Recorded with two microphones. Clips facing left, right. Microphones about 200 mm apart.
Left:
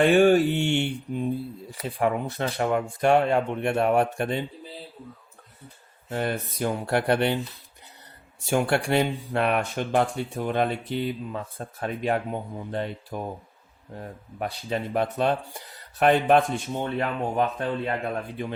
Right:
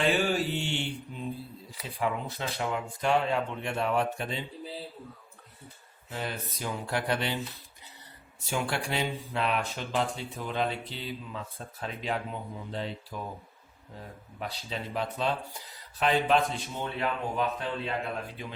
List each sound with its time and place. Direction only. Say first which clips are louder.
0.0 s mantra: left 10 dB; 55° left (ahead or behind)
1.7 s speech: left 6 dB; 55° left (ahead or behind)
6.1 s speech: left 8 dB; 55° left (ahead or behind)
8.4 s speech: left 8 dB; 55° left (ahead or behind)
14.3 s speech: left 8 dB; 55° left (ahead or behind)